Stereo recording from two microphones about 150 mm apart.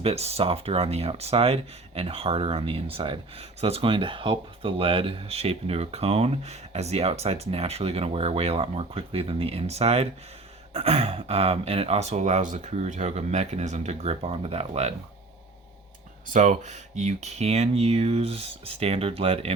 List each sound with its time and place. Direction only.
0.0 s speech: 45° right (ahead or behind)
16.3 s speech: 55° right (ahead or behind)